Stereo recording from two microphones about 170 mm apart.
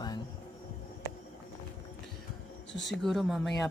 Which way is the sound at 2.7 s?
90° left.